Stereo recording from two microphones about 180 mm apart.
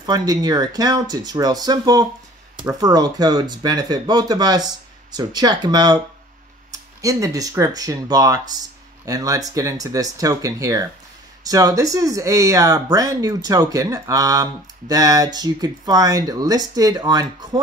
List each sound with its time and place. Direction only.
0.0 s speech: 20° right (ahead or behind)